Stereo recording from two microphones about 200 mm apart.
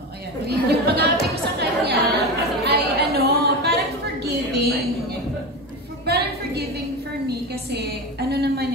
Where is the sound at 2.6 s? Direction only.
55° right (ahead or behind).